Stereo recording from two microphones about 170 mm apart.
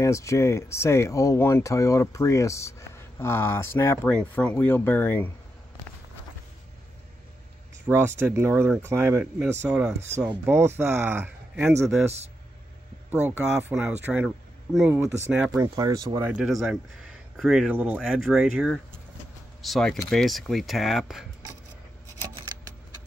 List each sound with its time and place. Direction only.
0.0 s speech: 20° left (ahead or behind)
7.8 s speech: 15° right (ahead or behind)
13.1 s speech: 10° right (ahead or behind)
15.6 s speech: 20° right (ahead or behind)
16.3 s speech: 5° right (ahead or behind)